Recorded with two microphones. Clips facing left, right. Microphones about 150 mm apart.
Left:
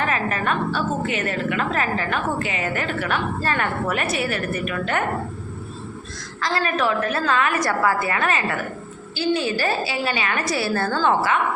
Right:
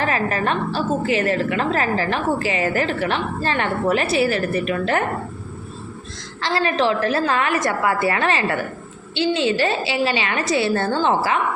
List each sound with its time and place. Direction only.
0.0 s a woman's voice: 35° right (ahead or behind)
6.4 s a woman's voice: 30° right (ahead or behind)